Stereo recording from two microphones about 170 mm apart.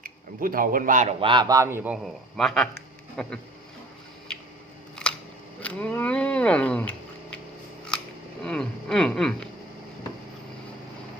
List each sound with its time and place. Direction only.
0.0 s speech: 55° right (ahead or behind)
1.2 s a man's voice: 30° right (ahead or behind); by 2.0 s 10° right (ahead or behind)
2.3 s a sound: 5° left (ahead or behind)
5.0 s scissors: 5° left (ahead or behind)
5.5 s speech: 10° left (ahead or behind)
8.4 s a sound: 5° left (ahead or behind)